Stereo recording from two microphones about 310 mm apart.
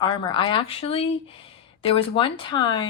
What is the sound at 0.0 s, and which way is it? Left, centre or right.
Speech, centre.